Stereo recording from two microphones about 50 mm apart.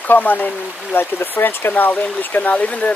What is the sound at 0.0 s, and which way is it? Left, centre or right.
Speech, left.